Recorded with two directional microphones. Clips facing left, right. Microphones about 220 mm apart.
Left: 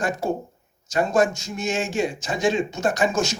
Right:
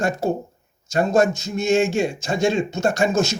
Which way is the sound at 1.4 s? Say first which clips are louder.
Right 7 dB; 25° right (ahead or behind).